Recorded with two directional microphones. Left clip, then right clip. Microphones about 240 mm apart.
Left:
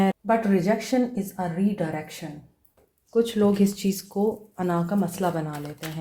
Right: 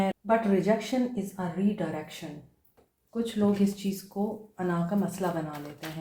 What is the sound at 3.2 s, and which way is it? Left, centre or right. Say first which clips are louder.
Speech: left 5 dB; left.